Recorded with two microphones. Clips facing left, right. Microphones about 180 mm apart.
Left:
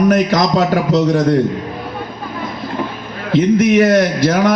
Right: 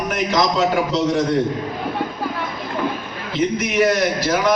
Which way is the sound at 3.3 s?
55° left (ahead or behind).